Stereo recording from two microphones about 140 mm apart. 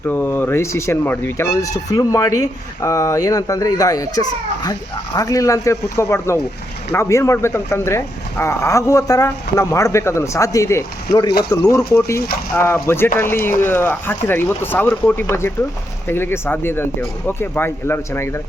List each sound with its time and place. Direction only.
0.1 s speech: 15° left (ahead or behind)